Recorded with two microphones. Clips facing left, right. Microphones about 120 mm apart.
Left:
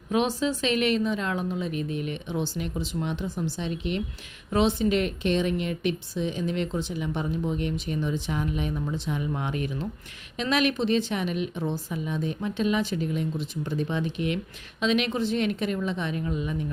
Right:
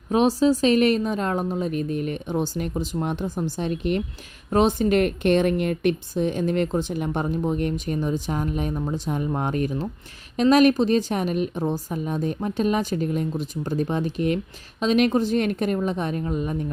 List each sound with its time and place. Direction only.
0.1 s a woman's voice: 35° right (ahead or behind)